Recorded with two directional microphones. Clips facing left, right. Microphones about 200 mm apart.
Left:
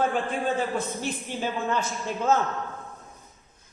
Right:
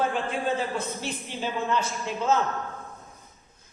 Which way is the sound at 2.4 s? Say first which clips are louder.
Even; centre (ahead or behind).